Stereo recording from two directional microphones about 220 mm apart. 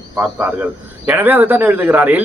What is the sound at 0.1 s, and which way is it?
Speech, 5° right (ahead or behind).